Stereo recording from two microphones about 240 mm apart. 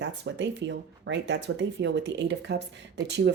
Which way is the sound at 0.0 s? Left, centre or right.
Right.